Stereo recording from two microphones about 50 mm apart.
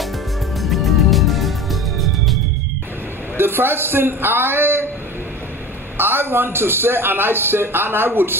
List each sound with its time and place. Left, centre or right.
0.6 s music: centre
3.3 s a man's voice: right
5.9 s a man's voice: right